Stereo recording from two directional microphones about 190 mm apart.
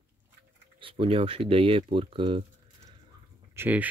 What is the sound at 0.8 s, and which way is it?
Speech, 30° right (ahead or behind).